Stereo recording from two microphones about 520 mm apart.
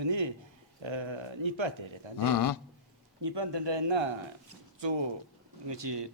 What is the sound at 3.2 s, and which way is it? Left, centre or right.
Speech, right.